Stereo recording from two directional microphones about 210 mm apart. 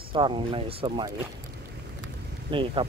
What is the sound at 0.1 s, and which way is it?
Speech, 25° right (ahead or behind).